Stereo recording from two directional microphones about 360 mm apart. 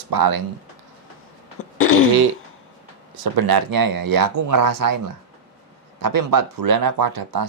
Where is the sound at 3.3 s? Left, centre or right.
Right.